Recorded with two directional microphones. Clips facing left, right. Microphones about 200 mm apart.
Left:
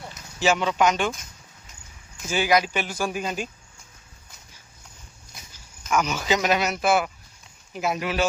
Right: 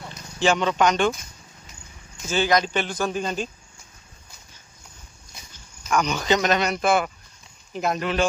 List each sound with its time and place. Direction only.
0.1 s speech: 5° left (ahead or behind)
2.2 s speech: 10° left (ahead or behind)
5.9 s speech: 5° left (ahead or behind)